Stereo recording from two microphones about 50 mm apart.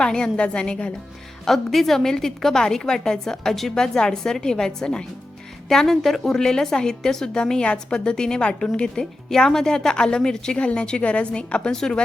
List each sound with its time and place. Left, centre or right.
0.0 s a woman's voice: centre
1.5 s a woman's voice: centre